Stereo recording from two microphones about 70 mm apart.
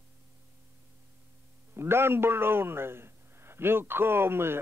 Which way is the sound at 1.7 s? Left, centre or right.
Right.